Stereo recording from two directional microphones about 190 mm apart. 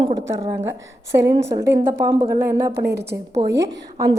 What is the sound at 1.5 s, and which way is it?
A woman's voice, 15° right (ahead or behind).